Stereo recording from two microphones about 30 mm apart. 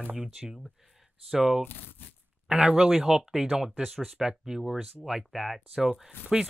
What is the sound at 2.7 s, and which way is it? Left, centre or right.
Speech, right.